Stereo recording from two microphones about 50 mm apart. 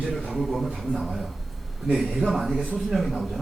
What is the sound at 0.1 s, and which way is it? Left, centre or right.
A man's voice, centre.